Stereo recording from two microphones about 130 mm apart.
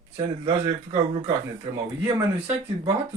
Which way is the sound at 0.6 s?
45° right (ahead or behind).